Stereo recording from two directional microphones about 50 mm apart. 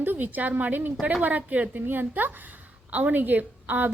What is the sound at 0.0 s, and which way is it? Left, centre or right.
A woman's voice, right.